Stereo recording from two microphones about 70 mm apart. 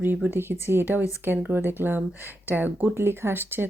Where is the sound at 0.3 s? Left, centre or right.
Right.